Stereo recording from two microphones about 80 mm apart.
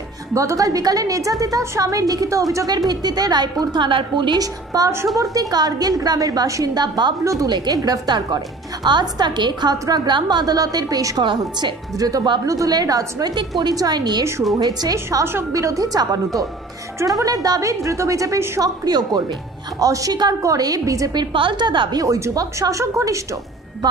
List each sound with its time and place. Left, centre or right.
0.3 s a woman's voice: right
2.9 s a woman's voice: right
4.4 s a woman's voice: right
15.0 s a woman's voice: right
15.5 s a woman's voice: right
18.6 s a woman's voice: right
21.1 s a woman's voice: right
22.0 s a woman's voice: right